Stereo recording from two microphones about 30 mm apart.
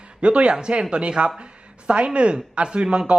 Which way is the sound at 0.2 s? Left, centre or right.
Right.